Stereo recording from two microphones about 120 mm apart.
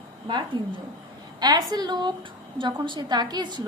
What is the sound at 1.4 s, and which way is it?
A woman's voice, 35° right (ahead or behind).